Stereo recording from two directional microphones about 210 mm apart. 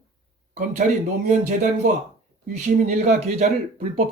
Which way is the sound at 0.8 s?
40° right (ahead or behind).